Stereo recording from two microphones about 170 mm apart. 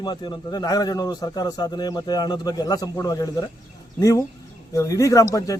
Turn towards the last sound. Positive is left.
turn(degrees=20)  # may be behind; listen again after turning